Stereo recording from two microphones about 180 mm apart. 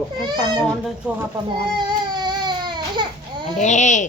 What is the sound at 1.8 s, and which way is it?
Baby cry, 25° right (ahead or behind).